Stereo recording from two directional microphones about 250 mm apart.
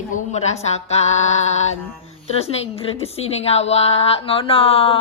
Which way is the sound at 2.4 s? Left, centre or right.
Left.